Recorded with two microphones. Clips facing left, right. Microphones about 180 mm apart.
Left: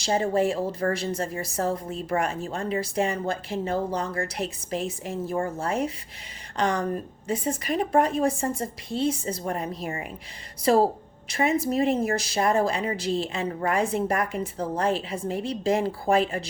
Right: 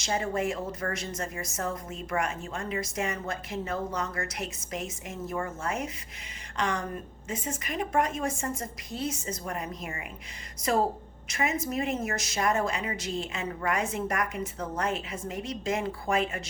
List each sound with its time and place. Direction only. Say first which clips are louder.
0.0 s a woman's voice: left 6 dB; 30° left (ahead or behind)